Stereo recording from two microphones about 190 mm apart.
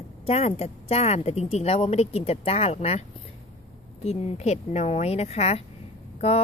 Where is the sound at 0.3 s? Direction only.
35° left (ahead or behind).